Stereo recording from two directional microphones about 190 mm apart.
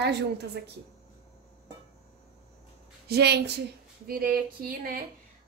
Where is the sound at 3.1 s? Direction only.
60° right (ahead or behind).